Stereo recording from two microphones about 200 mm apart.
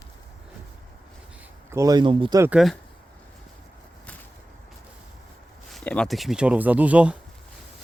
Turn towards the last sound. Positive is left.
turn(degrees=-5)  # may be behind; listen again after turning